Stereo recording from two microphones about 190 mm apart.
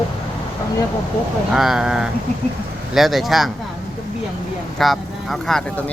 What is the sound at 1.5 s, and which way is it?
Speech, centre (ahead or behind).